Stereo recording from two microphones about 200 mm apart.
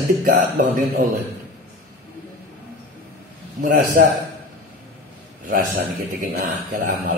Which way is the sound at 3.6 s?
40° right (ahead or behind).